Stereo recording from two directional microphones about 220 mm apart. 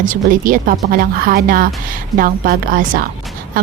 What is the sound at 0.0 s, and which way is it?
Speech, 40° right (ahead or behind).